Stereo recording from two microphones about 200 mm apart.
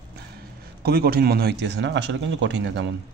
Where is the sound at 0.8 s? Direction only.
50° right (ahead or behind).